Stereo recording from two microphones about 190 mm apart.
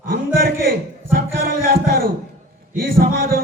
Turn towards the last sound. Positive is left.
turn(degrees=-50)  # may be behind; listen again after turning